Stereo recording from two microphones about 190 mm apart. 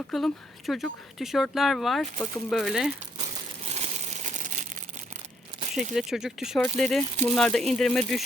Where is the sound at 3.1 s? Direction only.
35° right (ahead or behind).